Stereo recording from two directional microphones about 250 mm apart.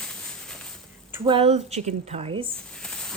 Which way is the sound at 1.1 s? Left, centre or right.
Centre.